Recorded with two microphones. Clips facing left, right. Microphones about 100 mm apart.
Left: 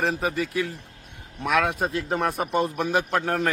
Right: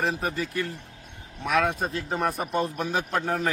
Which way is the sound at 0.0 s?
Centre (ahead or behind).